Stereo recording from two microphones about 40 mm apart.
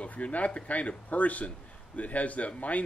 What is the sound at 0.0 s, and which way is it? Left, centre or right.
Speech, left.